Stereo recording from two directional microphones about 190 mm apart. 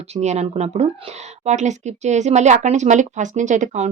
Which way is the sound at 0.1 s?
35° right (ahead or behind).